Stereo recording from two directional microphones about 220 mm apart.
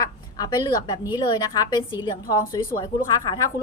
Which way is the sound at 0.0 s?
15° left (ahead or behind).